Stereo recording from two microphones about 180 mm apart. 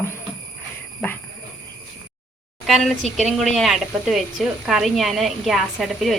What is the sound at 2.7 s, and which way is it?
Speech, centre (ahead or behind).